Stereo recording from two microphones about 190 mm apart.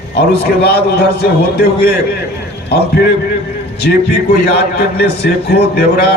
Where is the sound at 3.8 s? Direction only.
55° left (ahead or behind).